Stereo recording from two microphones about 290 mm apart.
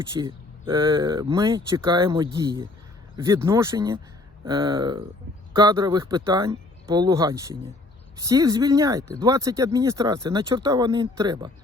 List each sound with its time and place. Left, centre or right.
0.1 s speech: centre